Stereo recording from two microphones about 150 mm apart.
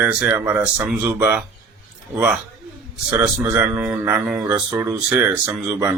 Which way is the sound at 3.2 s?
10° right (ahead or behind).